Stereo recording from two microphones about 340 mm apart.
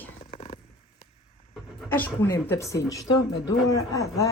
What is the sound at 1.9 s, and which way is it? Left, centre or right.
Speech, centre.